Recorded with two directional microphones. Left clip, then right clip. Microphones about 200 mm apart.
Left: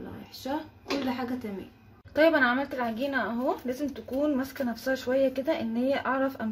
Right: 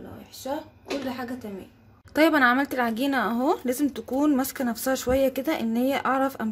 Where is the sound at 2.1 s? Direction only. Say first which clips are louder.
Right 3 dB; 35° right (ahead or behind).